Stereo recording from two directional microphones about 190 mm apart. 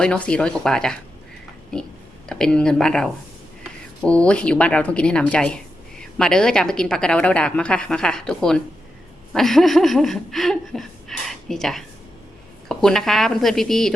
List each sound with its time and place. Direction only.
0.0 s a woman's voice: 5° left (ahead or behind)
2.3 s a woman's voice: 5° left (ahead or behind)
11.3 s a sound: centre (ahead or behind)
12.6 s a woman's voice: centre (ahead or behind)